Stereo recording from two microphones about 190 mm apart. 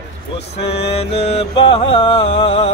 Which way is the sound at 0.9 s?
30° left (ahead or behind).